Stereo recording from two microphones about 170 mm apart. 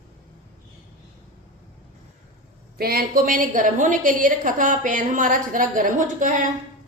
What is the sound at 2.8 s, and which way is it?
A woman's voice, 60° right (ahead or behind).